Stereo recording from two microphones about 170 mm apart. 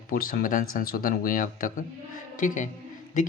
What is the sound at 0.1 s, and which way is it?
A man's voice, 55° left (ahead or behind).